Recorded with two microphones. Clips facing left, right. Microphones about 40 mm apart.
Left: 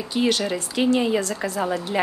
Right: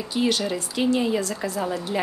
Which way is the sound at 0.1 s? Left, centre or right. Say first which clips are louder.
Left 2 dB; centre.